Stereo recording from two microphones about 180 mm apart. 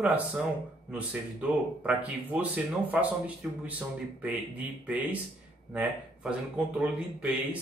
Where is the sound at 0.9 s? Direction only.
5° right (ahead or behind).